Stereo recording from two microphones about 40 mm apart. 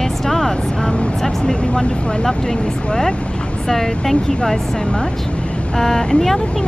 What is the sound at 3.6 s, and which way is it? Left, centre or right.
Speech, centre.